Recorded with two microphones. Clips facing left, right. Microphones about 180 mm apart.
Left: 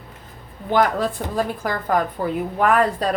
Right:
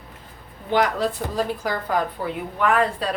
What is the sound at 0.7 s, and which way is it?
Speech, 50° left (ahead or behind).